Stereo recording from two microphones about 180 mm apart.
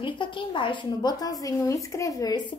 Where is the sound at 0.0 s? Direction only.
25° left (ahead or behind).